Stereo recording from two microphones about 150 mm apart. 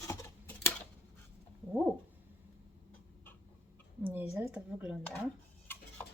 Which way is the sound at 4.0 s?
15° right (ahead or behind).